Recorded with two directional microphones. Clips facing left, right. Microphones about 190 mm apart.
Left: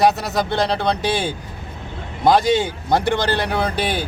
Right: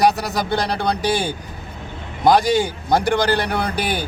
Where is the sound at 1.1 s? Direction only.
25° left (ahead or behind).